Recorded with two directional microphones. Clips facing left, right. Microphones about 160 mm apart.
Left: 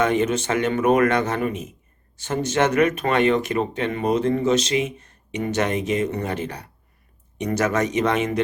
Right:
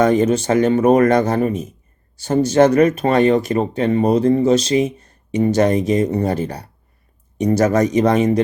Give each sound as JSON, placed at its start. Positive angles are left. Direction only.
{"t": 0.0, "sound": "speech", "side_deg": -35}